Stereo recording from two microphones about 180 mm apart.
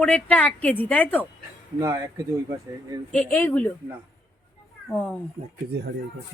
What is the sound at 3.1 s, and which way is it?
Speech, 10° left (ahead or behind).